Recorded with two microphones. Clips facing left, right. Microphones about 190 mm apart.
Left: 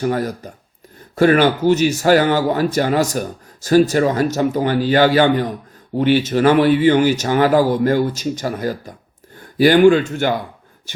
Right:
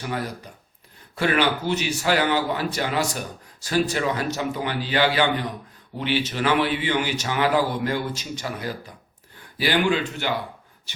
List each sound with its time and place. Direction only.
0.0 s speech: 45° left (ahead or behind)